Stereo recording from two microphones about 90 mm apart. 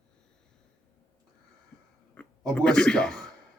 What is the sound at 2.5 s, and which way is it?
Speech, 10° left (ahead or behind).